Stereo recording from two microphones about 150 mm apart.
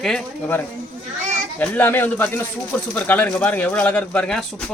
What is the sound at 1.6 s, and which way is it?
Speech, 10° left (ahead or behind).